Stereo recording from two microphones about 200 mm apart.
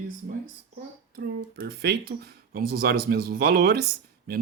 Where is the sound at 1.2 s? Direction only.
50° right (ahead or behind).